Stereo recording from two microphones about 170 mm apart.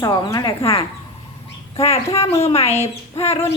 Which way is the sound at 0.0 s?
20° left (ahead or behind).